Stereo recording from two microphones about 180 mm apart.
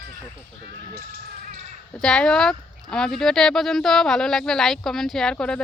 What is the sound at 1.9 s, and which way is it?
Speech, 5° left (ahead or behind).